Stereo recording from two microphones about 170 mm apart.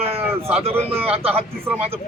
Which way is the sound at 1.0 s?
35° right (ahead or behind).